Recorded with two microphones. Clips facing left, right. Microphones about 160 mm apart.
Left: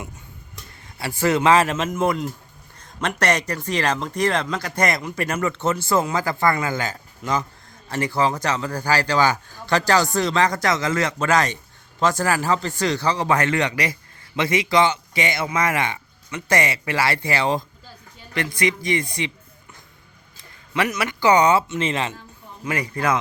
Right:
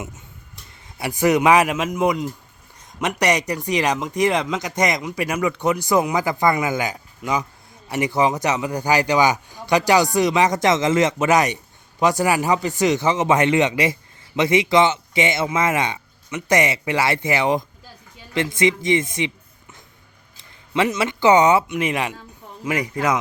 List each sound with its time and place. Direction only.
0.9 s speech: 20° right (ahead or behind)
2.7 s a sound: 15° right (ahead or behind)
3.2 s a man's voice: 15° right (ahead or behind)
20.3 s a man's voice: 25° right (ahead or behind)